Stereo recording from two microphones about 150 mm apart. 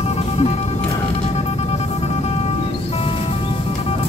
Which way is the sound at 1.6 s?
45° left (ahead or behind).